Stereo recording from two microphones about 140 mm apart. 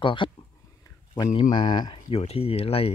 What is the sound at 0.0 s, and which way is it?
Speech, 35° left (ahead or behind).